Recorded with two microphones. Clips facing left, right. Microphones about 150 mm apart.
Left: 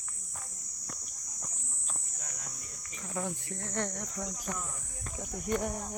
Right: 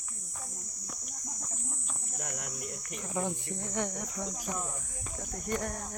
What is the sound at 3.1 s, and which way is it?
Speech, 20° right (ahead or behind).